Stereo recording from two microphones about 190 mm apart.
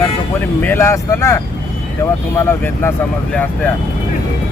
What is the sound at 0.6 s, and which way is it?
Speech, 10° left (ahead or behind).